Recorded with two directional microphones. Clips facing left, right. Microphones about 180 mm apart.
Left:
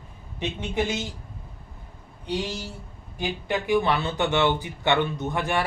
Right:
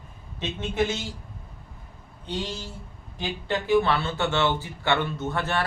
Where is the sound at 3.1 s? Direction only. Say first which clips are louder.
Left 1 dB; 15° left (ahead or behind).